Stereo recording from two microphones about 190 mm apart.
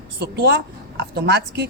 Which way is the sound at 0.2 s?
55° right (ahead or behind).